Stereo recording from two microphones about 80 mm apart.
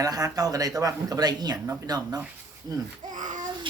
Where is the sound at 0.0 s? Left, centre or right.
Right.